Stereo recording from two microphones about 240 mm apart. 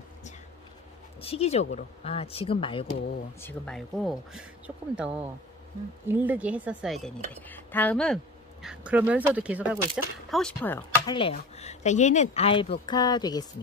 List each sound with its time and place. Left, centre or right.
1.2 s speech: left
3.3 s speech: centre
11.1 s speech: left